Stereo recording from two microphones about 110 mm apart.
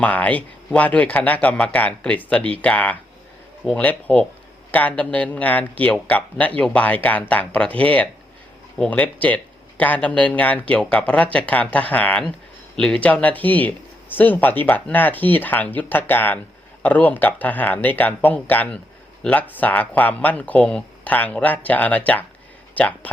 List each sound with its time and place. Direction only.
0.0 s speech: 15° left (ahead or behind)